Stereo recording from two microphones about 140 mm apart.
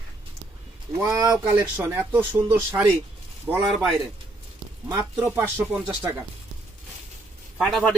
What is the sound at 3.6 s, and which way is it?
Speech, centre (ahead or behind).